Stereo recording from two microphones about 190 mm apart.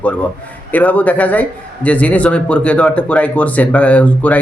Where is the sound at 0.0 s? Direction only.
5° left (ahead or behind).